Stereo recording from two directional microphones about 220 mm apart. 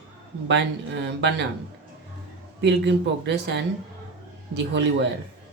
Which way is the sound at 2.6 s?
50° right (ahead or behind).